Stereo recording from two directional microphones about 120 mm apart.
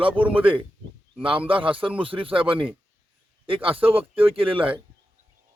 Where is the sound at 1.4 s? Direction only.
45° right (ahead or behind).